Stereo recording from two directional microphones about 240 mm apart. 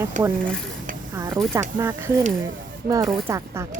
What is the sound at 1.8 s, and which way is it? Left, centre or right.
A woman's voice, centre.